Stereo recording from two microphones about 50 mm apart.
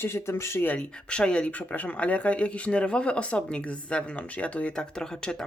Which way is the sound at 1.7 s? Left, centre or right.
Left.